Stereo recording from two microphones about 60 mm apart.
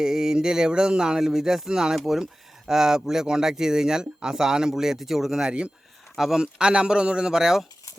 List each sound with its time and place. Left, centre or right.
0.0 s speech: centre
5.5 s speech: centre